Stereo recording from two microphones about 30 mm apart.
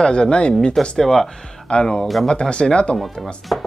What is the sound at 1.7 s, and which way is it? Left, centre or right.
Speech, left.